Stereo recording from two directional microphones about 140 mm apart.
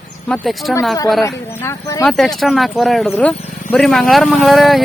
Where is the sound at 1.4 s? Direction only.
15° left (ahead or behind).